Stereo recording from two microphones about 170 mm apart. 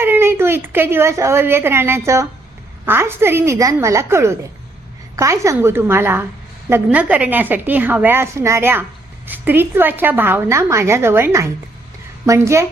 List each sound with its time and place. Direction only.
0.0 s a woman's voice: 15° right (ahead or behind)